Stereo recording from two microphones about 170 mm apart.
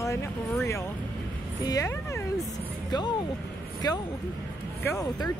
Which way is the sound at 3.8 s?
25° left (ahead or behind).